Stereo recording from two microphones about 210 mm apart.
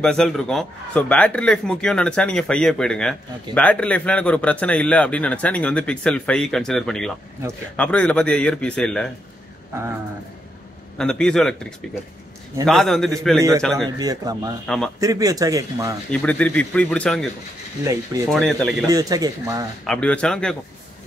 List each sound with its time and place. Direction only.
0.0 s a man's voice: centre (ahead or behind)
11.0 s a man's voice: 5° left (ahead or behind)
13.8 s a man's voice: 20° right (ahead or behind)
16.1 s a man's voice: 5° left (ahead or behind)
18.3 s a man's voice: centre (ahead or behind)
18.9 s a man's voice: 15° right (ahead or behind)
19.9 s a man's voice: 5° left (ahead or behind)